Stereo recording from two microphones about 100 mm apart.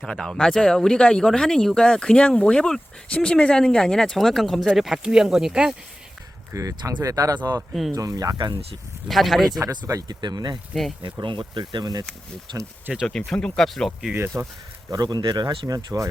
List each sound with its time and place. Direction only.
0.0 s speech: 5° left (ahead or behind)
6.5 s speech: 35° right (ahead or behind)
7.7 s speech: centre (ahead or behind)
7.9 s speech: 35° right (ahead or behind)
9.0 s speech: centre (ahead or behind)
9.5 s speech: 35° right (ahead or behind)
13.1 s speech: 5° left (ahead or behind)
14.3 s speech: 25° right (ahead or behind)
14.8 s speech: 40° right (ahead or behind)